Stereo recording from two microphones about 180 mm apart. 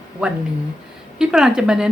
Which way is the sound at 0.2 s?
5° right (ahead or behind).